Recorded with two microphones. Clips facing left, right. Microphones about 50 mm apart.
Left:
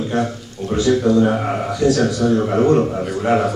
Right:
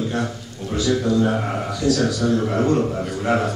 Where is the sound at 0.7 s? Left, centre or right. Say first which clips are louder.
Left 4 dB; left.